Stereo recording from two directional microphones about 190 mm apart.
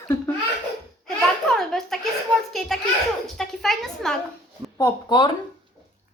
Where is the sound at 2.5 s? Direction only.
Centre (ahead or behind).